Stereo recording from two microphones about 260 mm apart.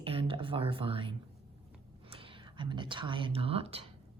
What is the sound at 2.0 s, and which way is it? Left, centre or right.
Speech, right.